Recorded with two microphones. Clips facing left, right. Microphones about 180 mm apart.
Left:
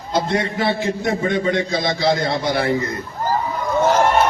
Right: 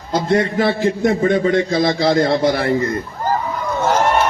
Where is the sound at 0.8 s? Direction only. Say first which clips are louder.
Right 5 dB; 45° right (ahead or behind).